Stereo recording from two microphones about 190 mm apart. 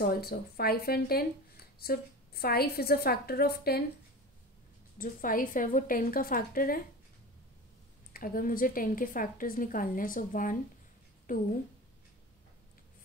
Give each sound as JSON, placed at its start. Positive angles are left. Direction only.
{"t": 0.0, "sound": "speech", "side_deg": 50}
{"t": 4.9, "sound": "speech", "side_deg": 45}
{"t": 8.1, "sound": "speech", "side_deg": 50}